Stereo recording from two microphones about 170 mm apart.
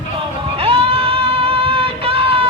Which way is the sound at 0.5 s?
35° right (ahead or behind).